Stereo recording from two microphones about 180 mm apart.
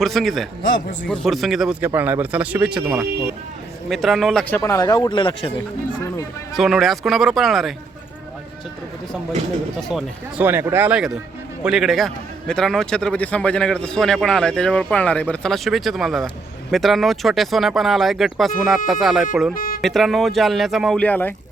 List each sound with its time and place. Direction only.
0.0 s a man's voice: centre (ahead or behind)
3.8 s speech: centre (ahead or behind); by 5.5 s 25° left (ahead or behind)
6.5 s a man's voice: centre (ahead or behind)
9.9 s a man's voice: 10° right (ahead or behind)
19.5 s a sound: 55° left (ahead or behind)
19.8 s a man's voice: centre (ahead or behind)